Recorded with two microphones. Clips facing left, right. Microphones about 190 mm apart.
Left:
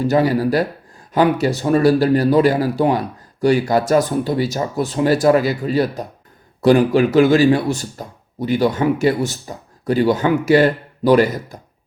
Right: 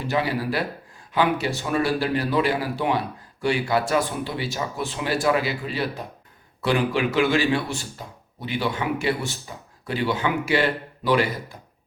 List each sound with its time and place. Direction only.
0.0 s speech: 40° left (ahead or behind)
11.5 s beatboxing: 40° left (ahead or behind)